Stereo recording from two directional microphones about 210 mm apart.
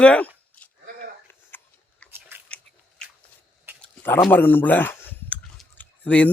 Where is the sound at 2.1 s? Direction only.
10° right (ahead or behind).